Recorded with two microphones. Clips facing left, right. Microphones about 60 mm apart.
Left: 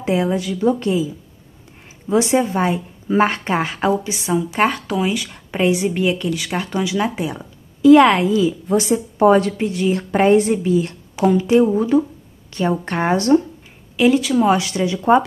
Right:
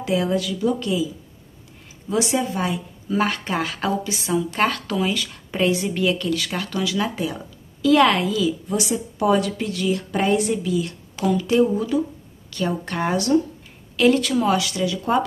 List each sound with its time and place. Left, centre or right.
0.0 s a woman's voice: left
9.6 s a woman's voice: left
13.9 s speech: centre
14.4 s speech: left